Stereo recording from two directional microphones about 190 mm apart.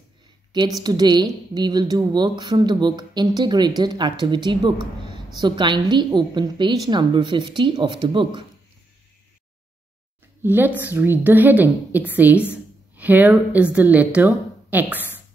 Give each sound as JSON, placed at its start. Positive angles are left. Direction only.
{"t": 0.5, "sound": "speech", "side_deg": -20}
{"t": 10.4, "sound": "a woman's voice", "side_deg": -10}